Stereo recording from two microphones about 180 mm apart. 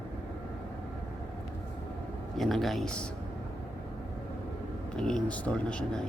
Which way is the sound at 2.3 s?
Centre (ahead or behind).